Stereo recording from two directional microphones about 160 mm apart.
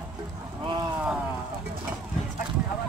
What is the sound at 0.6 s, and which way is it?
Speech, 30° right (ahead or behind).